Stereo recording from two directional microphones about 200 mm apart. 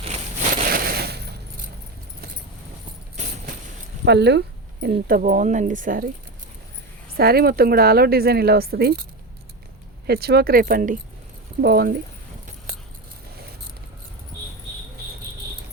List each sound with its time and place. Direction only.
0.0 s crushing: 35° right (ahead or behind); by 1.4 s 55° right (ahead or behind)
4.0 s speech: 55° right (ahead or behind)
7.1 s speech: 50° right (ahead or behind)
10.1 s speech: 50° right (ahead or behind)